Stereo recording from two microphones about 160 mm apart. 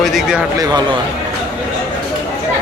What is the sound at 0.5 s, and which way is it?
Speech, 25° right (ahead or behind).